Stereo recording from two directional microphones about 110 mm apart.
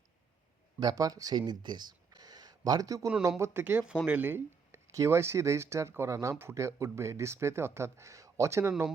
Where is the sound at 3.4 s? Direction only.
15° right (ahead or behind).